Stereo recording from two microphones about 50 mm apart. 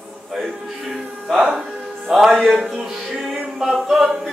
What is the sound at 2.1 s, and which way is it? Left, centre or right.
Speech, centre.